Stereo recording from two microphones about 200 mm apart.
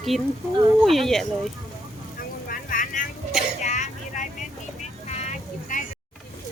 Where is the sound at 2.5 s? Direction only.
45° left (ahead or behind).